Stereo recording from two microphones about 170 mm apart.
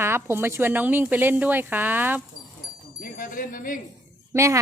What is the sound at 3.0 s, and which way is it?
Speech, 55° left (ahead or behind).